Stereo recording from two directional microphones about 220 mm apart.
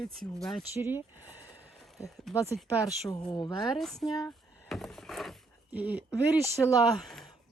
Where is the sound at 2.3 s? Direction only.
Centre (ahead or behind).